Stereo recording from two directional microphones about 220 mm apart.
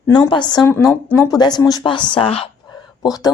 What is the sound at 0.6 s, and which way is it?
Speech, 5° left (ahead or behind).